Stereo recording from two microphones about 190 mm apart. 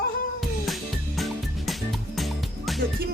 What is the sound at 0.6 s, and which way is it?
Music, centre (ahead or behind).